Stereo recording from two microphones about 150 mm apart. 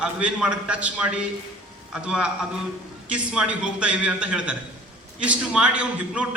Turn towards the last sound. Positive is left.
turn(degrees=-10)  # may be behind; listen again after turning